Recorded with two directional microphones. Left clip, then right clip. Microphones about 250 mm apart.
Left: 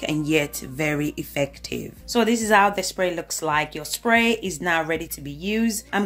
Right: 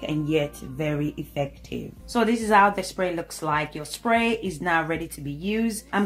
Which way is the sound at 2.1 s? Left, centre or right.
Left.